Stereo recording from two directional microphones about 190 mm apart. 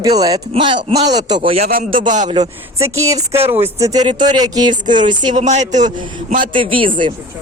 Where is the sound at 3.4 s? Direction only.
30° right (ahead or behind).